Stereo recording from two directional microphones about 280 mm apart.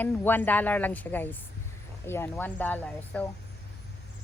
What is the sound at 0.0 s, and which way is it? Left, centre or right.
Speech, centre.